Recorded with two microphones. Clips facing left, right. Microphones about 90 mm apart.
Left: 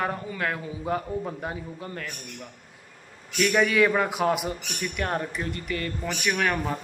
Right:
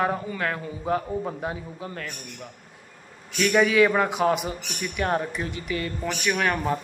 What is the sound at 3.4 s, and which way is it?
Speech, centre (ahead or behind).